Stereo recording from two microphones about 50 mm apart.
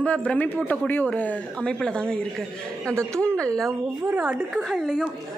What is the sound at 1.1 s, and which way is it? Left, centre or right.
Speech, left.